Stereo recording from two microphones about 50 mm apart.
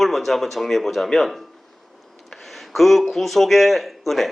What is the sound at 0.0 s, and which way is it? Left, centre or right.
Speech, centre.